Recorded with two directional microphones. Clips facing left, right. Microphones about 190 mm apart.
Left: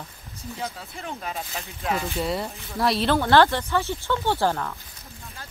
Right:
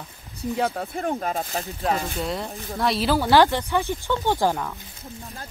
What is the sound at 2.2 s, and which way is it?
A woman's voice, centre (ahead or behind).